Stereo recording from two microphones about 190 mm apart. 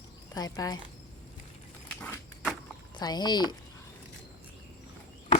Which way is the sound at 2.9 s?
20° left (ahead or behind).